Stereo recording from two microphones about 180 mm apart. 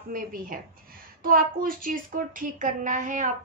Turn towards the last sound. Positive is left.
turn(degrees=-45)  # may be behind; listen again after turning